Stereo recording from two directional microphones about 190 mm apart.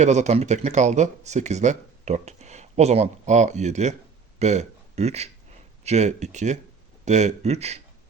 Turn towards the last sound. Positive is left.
turn(degrees=-35)  # may be behind; listen again after turning